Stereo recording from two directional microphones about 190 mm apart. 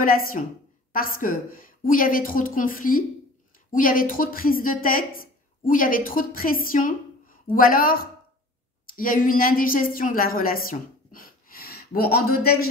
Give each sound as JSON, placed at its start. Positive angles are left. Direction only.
{"t": 0.0, "sound": "a woman's voice", "side_deg": 50}